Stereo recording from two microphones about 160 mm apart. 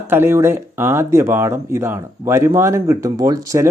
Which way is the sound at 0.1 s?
15° right (ahead or behind).